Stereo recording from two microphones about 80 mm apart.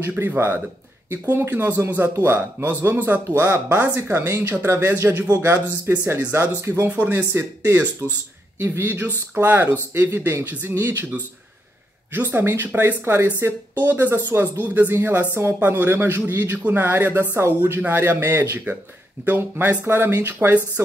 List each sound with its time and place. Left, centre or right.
0.0 s speech: right